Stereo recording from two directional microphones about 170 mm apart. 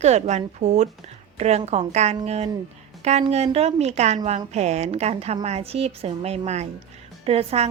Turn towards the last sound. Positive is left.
turn(degrees=-35)  # may be behind; listen again after turning